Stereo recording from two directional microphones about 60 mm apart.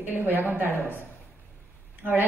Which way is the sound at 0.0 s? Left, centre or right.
Right.